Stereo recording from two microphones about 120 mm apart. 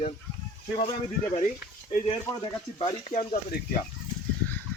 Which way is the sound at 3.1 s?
70° left (ahead or behind).